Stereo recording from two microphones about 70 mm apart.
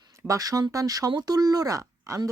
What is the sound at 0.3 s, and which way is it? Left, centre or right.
A woman's voice, right.